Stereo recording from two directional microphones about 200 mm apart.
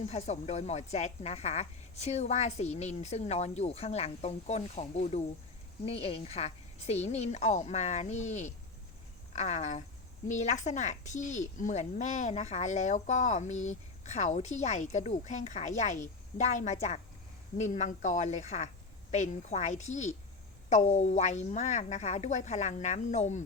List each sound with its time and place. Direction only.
0.0 s a woman's voice: 35° left (ahead or behind)